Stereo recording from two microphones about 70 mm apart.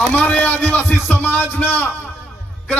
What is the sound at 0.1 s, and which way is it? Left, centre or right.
Music, left.